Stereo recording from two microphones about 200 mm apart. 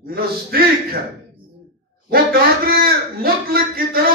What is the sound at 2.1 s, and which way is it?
A man's voice, 50° right (ahead or behind).